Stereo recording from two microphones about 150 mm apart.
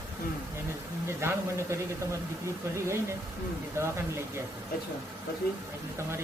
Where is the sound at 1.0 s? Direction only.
15° right (ahead or behind).